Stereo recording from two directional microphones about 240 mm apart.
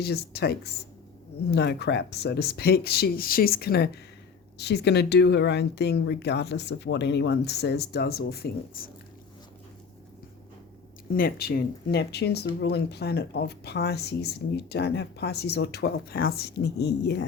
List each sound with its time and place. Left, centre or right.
0.0 s speech: left
11.1 s speech: left